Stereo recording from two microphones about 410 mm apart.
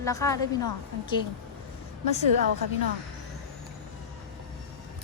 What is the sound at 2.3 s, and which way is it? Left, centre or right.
Speech, right.